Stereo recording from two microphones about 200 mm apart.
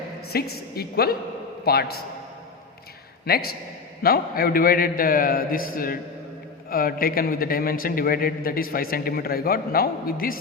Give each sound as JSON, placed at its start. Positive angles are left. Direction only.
{"t": 0.3, "sound": "a man's voice", "side_deg": 50}
{"t": 3.2, "sound": "a man's voice", "side_deg": 50}